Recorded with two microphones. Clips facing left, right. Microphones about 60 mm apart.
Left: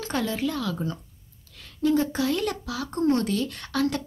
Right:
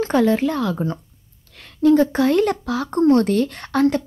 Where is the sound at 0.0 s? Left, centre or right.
Right.